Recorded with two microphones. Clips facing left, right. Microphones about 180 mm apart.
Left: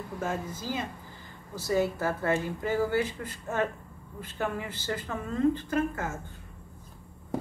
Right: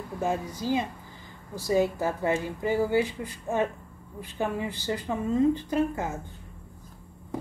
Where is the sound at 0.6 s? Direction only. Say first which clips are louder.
Right 6 dB; 15° right (ahead or behind).